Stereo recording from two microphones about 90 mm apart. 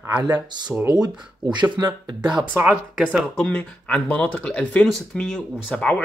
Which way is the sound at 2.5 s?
20° right (ahead or behind).